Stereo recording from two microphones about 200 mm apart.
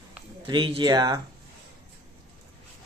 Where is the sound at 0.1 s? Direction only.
25° right (ahead or behind).